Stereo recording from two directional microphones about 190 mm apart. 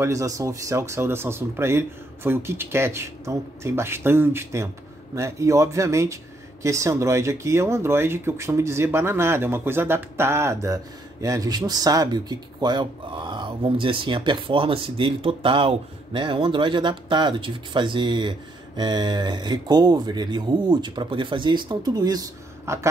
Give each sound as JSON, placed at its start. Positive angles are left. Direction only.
{"t": 0.0, "sound": "speech", "side_deg": -15}